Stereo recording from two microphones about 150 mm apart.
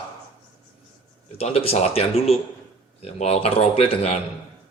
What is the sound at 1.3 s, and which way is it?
Speech, 40° left (ahead or behind).